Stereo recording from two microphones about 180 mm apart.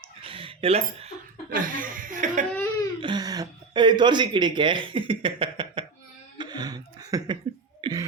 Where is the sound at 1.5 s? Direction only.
50° right (ahead or behind).